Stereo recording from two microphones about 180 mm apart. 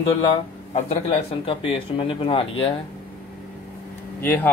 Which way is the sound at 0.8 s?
30° left (ahead or behind).